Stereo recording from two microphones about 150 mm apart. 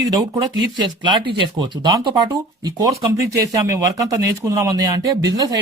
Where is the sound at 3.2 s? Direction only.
20° right (ahead or behind).